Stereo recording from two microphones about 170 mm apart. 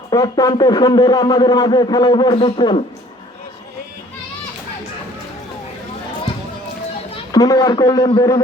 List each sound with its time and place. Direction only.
0.1 s a man's voice: 25° left (ahead or behind)
7.3 s a man's voice: 20° left (ahead or behind)